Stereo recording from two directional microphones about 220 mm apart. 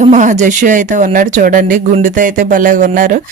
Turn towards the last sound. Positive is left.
turn(degrees=-35)  # may be behind; listen again after turning